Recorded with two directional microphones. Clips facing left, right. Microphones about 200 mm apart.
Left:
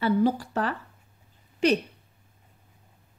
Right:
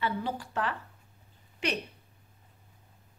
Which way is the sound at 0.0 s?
40° left (ahead or behind).